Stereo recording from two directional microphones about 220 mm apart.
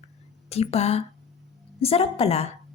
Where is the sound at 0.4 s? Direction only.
25° left (ahead or behind).